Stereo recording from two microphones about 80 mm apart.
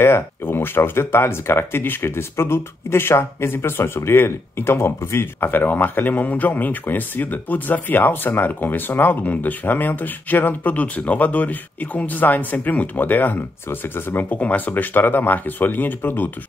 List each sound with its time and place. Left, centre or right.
0.0 s speech: left